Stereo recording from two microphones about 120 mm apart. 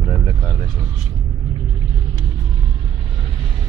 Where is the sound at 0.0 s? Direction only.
35° left (ahead or behind).